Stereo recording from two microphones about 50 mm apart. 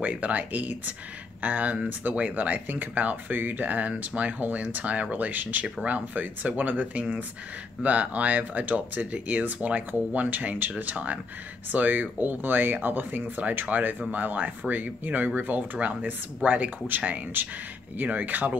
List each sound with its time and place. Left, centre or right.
0.0 s speech: right